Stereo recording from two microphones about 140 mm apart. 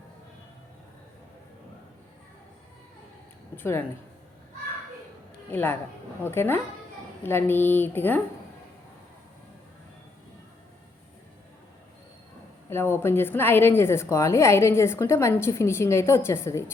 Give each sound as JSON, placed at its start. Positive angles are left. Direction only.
{"t": 3.5, "sound": "speech", "side_deg": 15}
{"t": 5.5, "sound": "speech", "side_deg": 15}
{"t": 12.7, "sound": "a woman's voice", "side_deg": 15}